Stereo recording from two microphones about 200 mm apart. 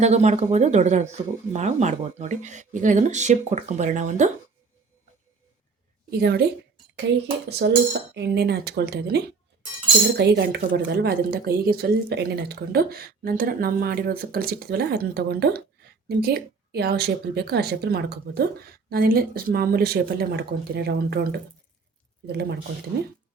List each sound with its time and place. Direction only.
0.0 s speech: 35° right (ahead or behind)
6.1 s speech: 55° right (ahead or behind)
7.6 s speech: 50° right (ahead or behind)